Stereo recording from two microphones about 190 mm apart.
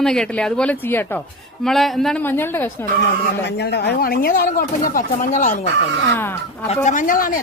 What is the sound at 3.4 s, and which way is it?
Speech, 60° left (ahead or behind).